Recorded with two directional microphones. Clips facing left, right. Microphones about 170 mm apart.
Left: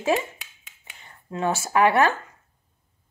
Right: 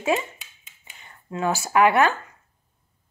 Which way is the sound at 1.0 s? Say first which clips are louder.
Even; 30° left (ahead or behind).